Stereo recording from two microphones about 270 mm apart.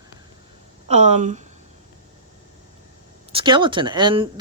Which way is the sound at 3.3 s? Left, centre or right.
Centre.